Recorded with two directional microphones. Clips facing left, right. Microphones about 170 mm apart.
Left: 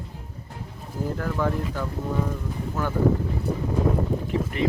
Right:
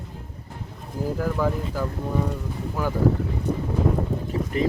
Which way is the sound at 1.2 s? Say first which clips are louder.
Right 1 dB; 5° right (ahead or behind).